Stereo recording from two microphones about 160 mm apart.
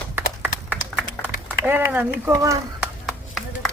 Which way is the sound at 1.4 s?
10° right (ahead or behind).